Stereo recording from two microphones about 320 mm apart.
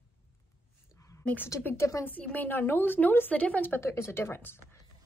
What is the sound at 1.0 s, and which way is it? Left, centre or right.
A woman's voice, centre.